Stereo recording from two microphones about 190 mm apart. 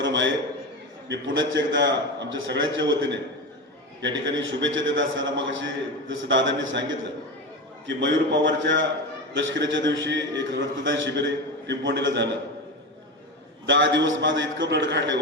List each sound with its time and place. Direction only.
0.0 s a sound: 75° right (ahead or behind)
1.0 s a man's voice: 75° right (ahead or behind)
7.9 s a man's voice: 75° right (ahead or behind)
13.7 s a man's voice: 75° right (ahead or behind)